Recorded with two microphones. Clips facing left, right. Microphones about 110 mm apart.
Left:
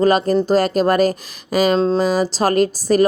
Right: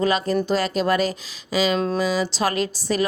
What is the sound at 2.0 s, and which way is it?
A woman's voice, 45° left (ahead or behind).